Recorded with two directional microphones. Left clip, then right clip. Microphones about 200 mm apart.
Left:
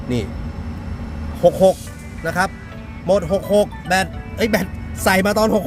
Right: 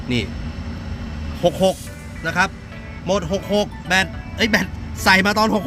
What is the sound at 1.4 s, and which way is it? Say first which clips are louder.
Speech: left 4 dB; 10° left (ahead or behind).